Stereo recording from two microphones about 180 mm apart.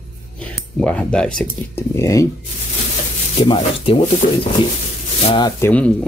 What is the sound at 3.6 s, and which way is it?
Speech, 30° left (ahead or behind).